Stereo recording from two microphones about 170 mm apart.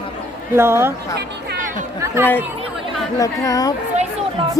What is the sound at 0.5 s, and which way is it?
Speech, 15° right (ahead or behind).